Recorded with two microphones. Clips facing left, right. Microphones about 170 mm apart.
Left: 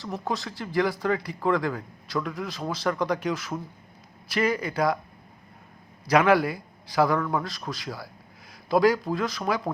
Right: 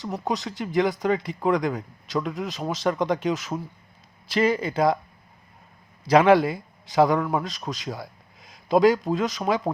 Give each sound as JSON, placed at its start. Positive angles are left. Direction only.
{"t": 0.0, "sound": "speech", "side_deg": -15}
{"t": 6.1, "sound": "a man's voice", "side_deg": -25}